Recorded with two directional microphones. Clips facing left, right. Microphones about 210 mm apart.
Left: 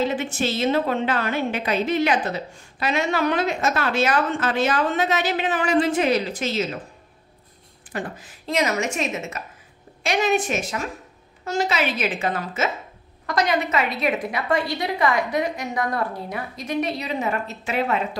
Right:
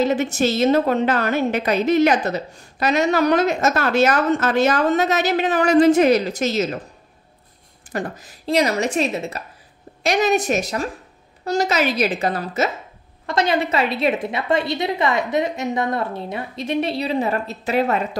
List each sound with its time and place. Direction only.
0.0 s a woman's voice: 40° right (ahead or behind)
7.9 s a woman's voice: 40° right (ahead or behind)
13.3 s a woman's voice: 25° right (ahead or behind)